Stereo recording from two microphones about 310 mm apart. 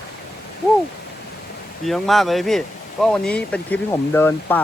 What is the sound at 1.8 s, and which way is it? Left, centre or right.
Speech, centre.